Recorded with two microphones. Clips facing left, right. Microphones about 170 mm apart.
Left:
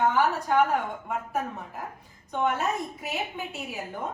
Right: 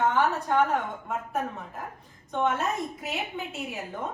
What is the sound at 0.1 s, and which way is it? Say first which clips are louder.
A woman's voice: left 1 dB; 5° left (ahead or behind).